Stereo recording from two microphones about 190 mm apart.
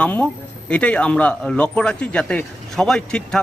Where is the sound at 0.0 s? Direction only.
5° left (ahead or behind).